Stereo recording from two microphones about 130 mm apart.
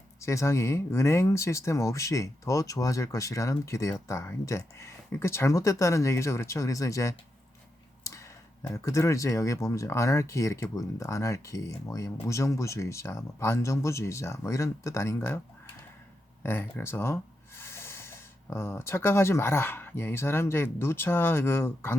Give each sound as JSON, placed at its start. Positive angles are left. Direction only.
{"t": 0.2, "sound": "speech", "side_deg": 20}
{"t": 16.4, "sound": "speech", "side_deg": 15}